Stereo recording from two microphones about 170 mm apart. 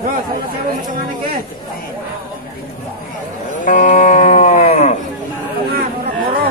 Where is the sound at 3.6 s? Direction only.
45° left (ahead or behind).